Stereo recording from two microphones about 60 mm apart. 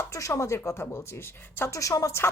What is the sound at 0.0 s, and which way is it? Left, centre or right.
Speech, left.